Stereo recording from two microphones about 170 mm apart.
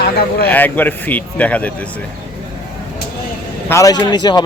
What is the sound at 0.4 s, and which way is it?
Speech, 10° left (ahead or behind).